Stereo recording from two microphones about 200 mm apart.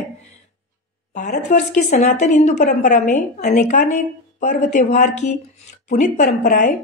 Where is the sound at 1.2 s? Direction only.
35° left (ahead or behind).